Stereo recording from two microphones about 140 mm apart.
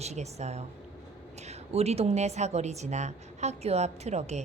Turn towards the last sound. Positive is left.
turn(degrees=-50)  # may be behind; listen again after turning